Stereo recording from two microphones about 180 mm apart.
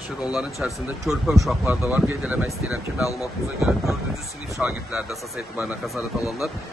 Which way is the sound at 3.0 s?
20° left (ahead or behind).